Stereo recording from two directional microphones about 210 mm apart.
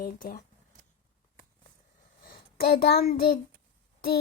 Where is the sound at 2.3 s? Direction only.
45° left (ahead or behind).